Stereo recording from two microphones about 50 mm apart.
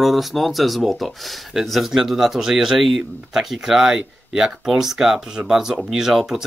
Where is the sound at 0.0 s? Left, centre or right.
Centre.